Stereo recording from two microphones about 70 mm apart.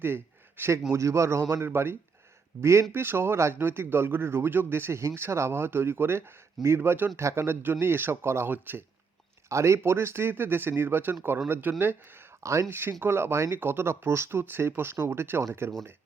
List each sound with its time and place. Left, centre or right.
0.0 s a sound: right
0.9 s speech: right
8.4 s speech: right
9.5 s speech: right
12.4 s speech: right
13.0 s speech: right